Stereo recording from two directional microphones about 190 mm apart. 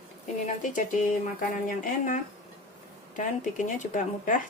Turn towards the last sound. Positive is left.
turn(degrees=40)  # may be behind; listen again after turning